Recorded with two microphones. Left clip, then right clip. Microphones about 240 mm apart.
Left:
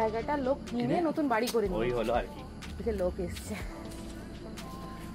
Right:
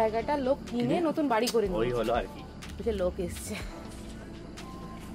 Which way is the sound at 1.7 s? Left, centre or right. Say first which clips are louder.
Right 2 dB; right.